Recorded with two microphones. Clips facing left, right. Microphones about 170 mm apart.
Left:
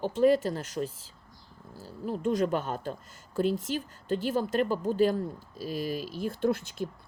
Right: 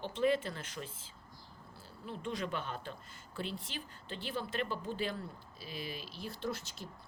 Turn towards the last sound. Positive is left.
turn(degrees=55)  # may be behind; listen again after turning